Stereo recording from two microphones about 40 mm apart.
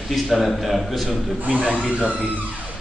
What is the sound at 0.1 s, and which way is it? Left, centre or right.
A man's voice, centre.